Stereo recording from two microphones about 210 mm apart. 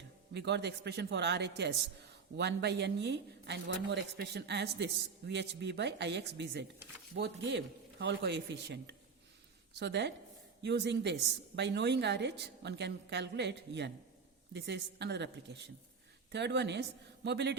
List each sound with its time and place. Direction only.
0.3 s a man's voice: 55° right (ahead or behind)